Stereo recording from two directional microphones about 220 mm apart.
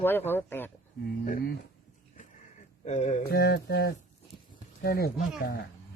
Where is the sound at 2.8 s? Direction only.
30° left (ahead or behind).